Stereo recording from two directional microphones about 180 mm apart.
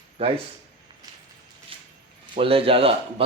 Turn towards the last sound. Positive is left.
turn(degrees=-30)  # may be behind; listen again after turning